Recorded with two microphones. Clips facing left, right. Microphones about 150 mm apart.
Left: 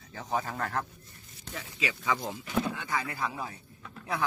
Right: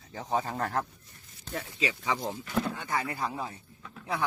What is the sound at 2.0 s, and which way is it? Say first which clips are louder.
A man's voice: even; 20° right (ahead or behind).